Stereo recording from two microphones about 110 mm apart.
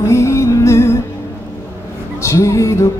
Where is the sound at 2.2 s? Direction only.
25° left (ahead or behind).